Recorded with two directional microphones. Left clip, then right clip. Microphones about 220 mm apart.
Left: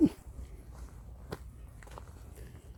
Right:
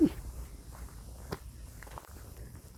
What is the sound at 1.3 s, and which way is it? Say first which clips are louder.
Biting: right 2 dB; 40° right (ahead or behind).